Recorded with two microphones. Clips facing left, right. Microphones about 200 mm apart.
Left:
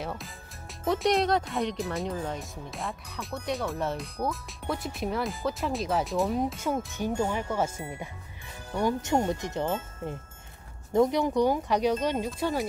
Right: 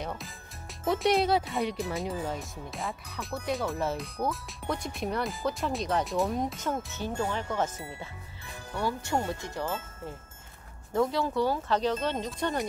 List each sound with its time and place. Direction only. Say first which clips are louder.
0.0 s speech: left 1 dB; centre (ahead or behind)